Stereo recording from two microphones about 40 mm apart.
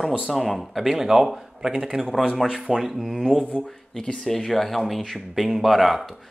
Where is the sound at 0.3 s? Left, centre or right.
Centre.